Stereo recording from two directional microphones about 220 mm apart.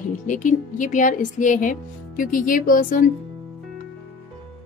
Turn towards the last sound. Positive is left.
turn(degrees=35)  # may be behind; listen again after turning